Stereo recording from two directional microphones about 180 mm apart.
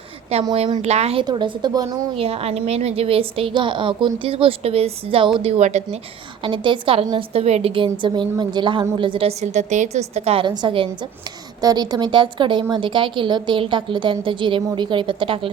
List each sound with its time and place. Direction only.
0.5 s speech: 35° right (ahead or behind)
6.4 s a woman's voice: 25° right (ahead or behind)